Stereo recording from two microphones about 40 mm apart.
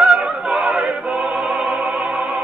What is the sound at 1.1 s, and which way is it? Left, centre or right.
Opera, right.